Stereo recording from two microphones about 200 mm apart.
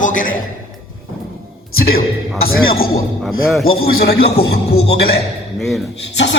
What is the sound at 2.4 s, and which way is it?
Speech, 50° left (ahead or behind).